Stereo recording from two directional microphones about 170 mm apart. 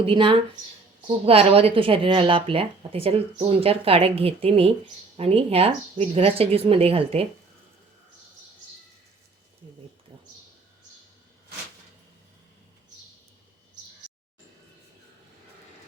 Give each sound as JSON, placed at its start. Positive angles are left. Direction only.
{"t": 0.0, "sound": "speech", "side_deg": -30}